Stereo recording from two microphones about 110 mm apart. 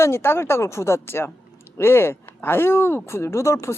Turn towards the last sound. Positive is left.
turn(degrees=25)  # may be behind; listen again after turning